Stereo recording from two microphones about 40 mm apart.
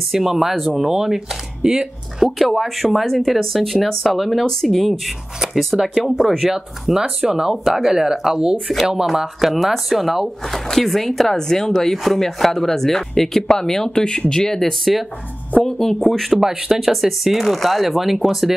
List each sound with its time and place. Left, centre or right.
0.1 s speech: centre
2.3 s speech: centre
14.6 s speech: centre
16.3 s speech: centre